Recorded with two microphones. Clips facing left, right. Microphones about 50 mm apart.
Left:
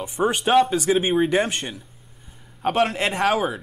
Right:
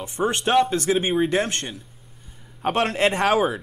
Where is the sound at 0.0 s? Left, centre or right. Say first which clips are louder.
Left 1 dB; centre.